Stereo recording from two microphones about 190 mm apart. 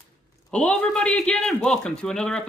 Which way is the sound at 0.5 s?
5° left (ahead or behind).